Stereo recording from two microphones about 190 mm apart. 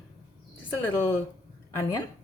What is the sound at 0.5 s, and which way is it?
A woman's voice, 10° left (ahead or behind).